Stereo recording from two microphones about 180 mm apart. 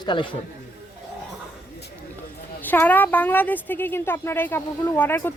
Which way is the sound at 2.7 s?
10° left (ahead or behind).